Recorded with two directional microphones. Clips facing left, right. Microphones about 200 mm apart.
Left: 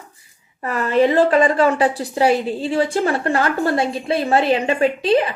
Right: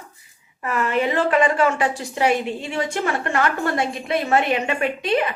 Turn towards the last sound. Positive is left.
turn(degrees=30)  # may be behind; listen again after turning